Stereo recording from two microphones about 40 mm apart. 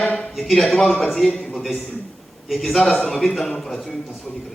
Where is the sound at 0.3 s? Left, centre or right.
Centre.